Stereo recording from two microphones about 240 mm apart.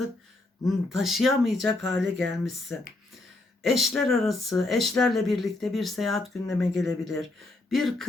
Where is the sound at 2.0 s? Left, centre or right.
Right.